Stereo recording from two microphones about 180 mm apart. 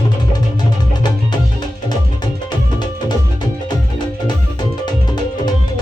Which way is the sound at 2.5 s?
25° left (ahead or behind).